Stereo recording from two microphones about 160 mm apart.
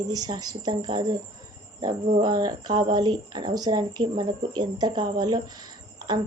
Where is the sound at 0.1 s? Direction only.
25° right (ahead or behind).